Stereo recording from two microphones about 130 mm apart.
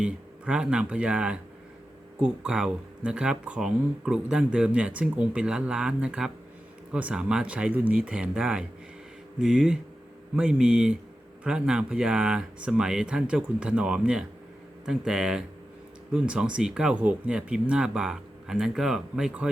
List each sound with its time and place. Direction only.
0.0 s speech: 5° right (ahead or behind)